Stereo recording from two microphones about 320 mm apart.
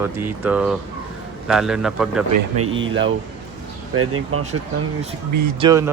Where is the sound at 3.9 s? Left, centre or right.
Right.